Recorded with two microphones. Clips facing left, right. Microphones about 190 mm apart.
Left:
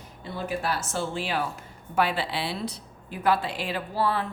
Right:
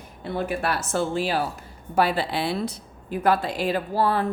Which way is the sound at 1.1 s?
40° right (ahead or behind).